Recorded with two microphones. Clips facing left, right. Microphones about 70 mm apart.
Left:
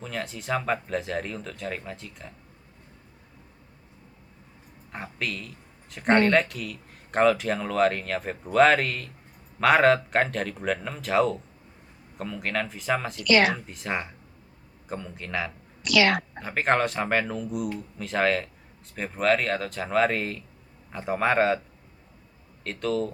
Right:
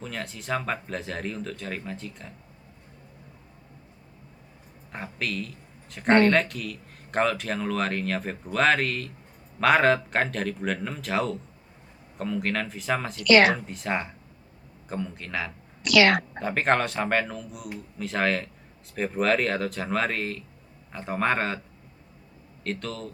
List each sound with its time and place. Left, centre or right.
0.0 s speech: centre
4.9 s speech: centre
13.2 s a woman's voice: right
13.7 s speech: centre
15.8 s a woman's voice: right
16.4 s speech: centre
22.6 s speech: centre